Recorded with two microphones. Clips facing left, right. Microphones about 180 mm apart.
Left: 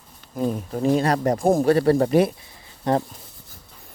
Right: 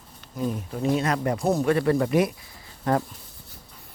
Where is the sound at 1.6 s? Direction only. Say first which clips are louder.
Left 4 dB; 35° left (ahead or behind).